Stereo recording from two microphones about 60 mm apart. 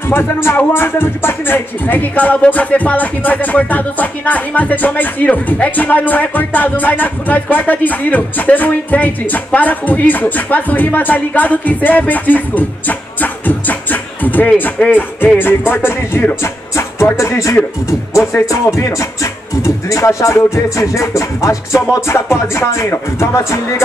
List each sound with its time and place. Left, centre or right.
0.1 s music: left
0.7 s speech: left
14.9 s music: left
16.7 s speech: left
20.3 s music: left